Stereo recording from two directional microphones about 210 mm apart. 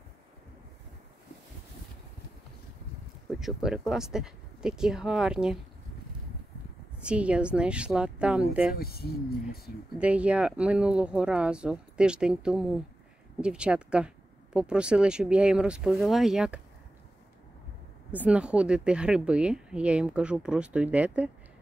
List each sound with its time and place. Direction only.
3.3 s speech: centre (ahead or behind)
7.0 s speech: 5° right (ahead or behind)
8.7 s speech: 45° left (ahead or behind)
9.9 s speech: 5° right (ahead or behind)
18.2 s speech: 5° right (ahead or behind)